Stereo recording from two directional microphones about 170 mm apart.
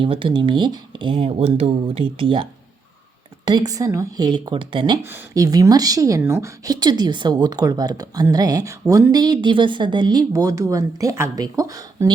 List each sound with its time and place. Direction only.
0.0 s speech: 30° right (ahead or behind)